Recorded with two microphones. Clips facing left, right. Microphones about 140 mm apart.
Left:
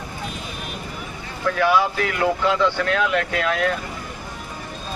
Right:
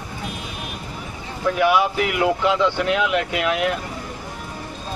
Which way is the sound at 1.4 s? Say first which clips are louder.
Right 1 dB; 15° right (ahead or behind).